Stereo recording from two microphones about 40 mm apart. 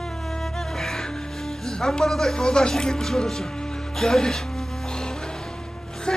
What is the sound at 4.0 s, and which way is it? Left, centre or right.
Music, centre.